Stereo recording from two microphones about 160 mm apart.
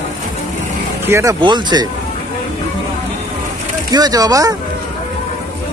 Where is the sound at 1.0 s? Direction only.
15° right (ahead or behind).